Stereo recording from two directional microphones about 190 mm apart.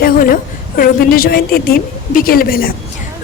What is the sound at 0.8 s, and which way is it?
A woman's voice, 50° left (ahead or behind).